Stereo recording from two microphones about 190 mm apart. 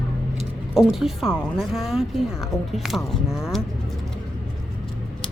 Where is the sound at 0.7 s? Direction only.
Centre (ahead or behind).